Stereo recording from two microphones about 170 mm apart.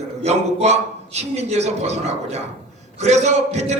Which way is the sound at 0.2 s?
40° right (ahead or behind).